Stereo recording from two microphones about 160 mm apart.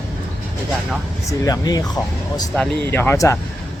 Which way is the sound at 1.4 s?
25° left (ahead or behind).